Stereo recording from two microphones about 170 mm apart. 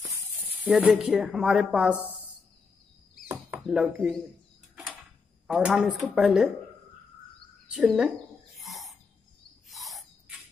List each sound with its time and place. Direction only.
0.7 s speech: 5° right (ahead or behind)
3.3 s chop: 15° right (ahead or behind)
3.6 s speech: 5° right (ahead or behind)
5.5 s speech: 5° right (ahead or behind)
7.7 s a sound: 5° right (ahead or behind)
9.7 s owl: centre (ahead or behind)